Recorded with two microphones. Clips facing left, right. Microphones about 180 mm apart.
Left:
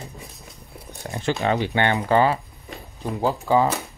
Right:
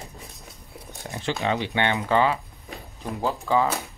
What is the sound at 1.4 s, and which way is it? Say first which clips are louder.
Speech: left 3 dB; 45° left (ahead or behind).